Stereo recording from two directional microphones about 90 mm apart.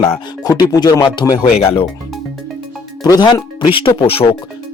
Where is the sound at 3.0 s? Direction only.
55° left (ahead or behind); by 4.2 s 90° left.